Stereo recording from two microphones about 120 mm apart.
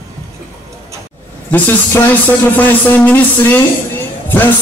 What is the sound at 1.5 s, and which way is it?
Speech, 15° left (ahead or behind).